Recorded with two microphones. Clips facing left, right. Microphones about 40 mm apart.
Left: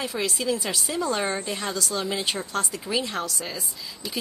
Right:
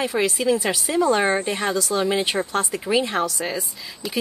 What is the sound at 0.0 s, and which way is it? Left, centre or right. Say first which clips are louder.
Speech: right 6 dB; centre.